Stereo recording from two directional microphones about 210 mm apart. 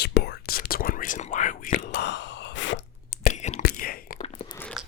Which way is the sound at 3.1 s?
35° left (ahead or behind).